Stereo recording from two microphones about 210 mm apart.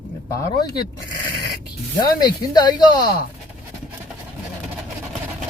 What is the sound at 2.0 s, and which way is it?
Speech, 20° left (ahead or behind).